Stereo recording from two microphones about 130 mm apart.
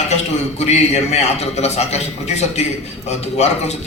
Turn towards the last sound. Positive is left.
turn(degrees=55)  # may be behind; listen again after turning